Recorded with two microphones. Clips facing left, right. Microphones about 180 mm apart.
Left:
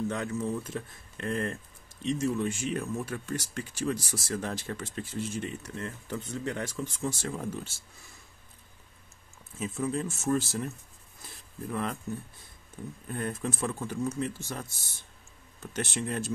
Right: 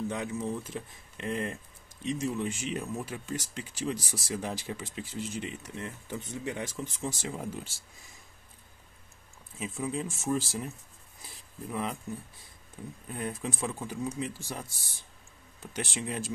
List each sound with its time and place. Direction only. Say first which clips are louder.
0.1 s speech: left 2 dB; 15° right (ahead or behind)
9.6 s speech: left 3 dB; 10° right (ahead or behind)
13.1 s speech: left 2 dB; 10° right (ahead or behind)